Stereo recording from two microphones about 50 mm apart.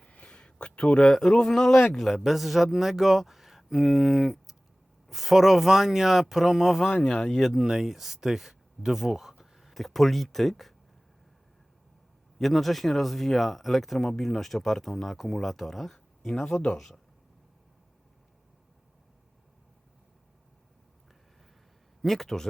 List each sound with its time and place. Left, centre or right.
0.1 s a sound: centre
1.1 s speech: centre
12.4 s speech: centre
22.0 s speech: centre